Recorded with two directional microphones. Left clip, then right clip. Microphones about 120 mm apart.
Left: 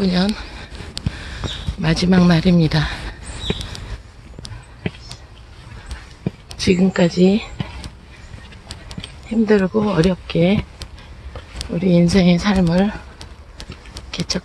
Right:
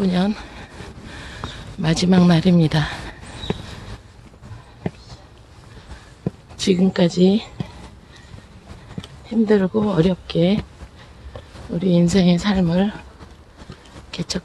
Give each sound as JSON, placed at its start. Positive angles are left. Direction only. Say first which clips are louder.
{"t": 0.0, "sound": "speech", "louder": "left 2 dB", "side_deg": -20}
{"t": 1.1, "sound": "a sound", "louder": "even", "side_deg": -10}
{"t": 6.2, "sound": "speech", "louder": "left 2 dB", "side_deg": -5}
{"t": 9.3, "sound": "speech", "louder": "left 1 dB", "side_deg": -10}
{"t": 9.7, "sound": "speech", "louder": "left 2 dB", "side_deg": 0}
{"t": 9.9, "sound": "speech", "louder": "left 1 dB", "side_deg": -10}
{"t": 11.7, "sound": "speech", "louder": "left 2 dB", "side_deg": 0}
{"t": 14.1, "sound": "speech", "louder": "left 3 dB", "side_deg": 5}